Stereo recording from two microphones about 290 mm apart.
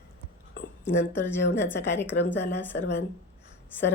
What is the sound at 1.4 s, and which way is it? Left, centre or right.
Speech, left.